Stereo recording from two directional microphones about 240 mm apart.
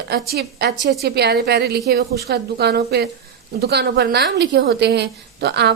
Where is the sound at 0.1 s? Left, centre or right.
Right.